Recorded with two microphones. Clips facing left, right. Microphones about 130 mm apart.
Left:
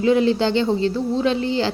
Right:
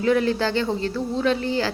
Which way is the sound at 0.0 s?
20° left (ahead or behind).